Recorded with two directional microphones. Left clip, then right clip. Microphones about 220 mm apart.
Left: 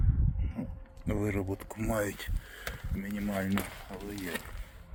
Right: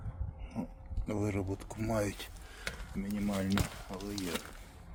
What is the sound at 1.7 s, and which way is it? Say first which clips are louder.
Speech: left 1 dB; 5° right (ahead or behind).